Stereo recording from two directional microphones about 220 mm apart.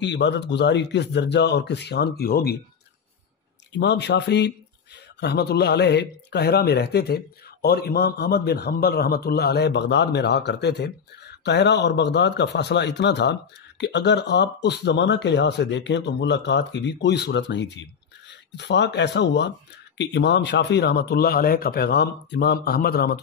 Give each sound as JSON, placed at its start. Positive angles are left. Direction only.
{"t": 0.0, "sound": "speech", "side_deg": 55}
{"t": 3.7, "sound": "speech", "side_deg": 50}